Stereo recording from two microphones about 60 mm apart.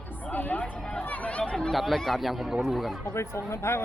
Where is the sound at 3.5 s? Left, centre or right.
Left.